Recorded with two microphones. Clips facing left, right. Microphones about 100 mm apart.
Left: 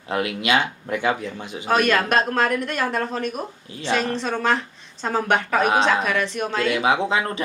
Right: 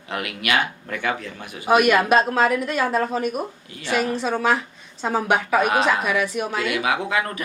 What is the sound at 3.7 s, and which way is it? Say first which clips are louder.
Speech: left 4 dB; 25° left (ahead or behind).